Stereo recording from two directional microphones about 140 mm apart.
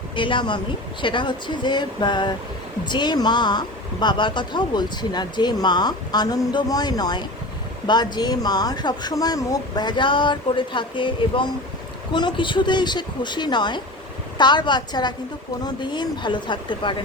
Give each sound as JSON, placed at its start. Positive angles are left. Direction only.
{"t": 0.2, "sound": "speech", "side_deg": 35}